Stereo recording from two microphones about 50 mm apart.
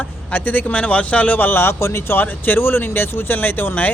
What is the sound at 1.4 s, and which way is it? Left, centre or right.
Speech, left.